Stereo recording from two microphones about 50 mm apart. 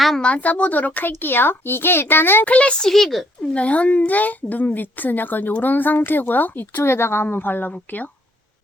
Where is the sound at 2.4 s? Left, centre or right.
Left.